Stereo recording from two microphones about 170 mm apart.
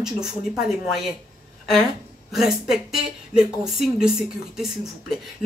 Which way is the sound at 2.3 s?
Centre (ahead or behind).